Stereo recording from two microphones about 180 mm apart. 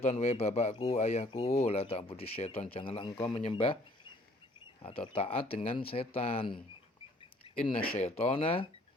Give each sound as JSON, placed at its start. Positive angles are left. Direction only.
{"t": 0.0, "sound": "speech", "side_deg": 35}
{"t": 4.8, "sound": "speech", "side_deg": 30}
{"t": 7.5, "sound": "a sound", "side_deg": 30}
{"t": 7.9, "sound": "speech", "side_deg": 35}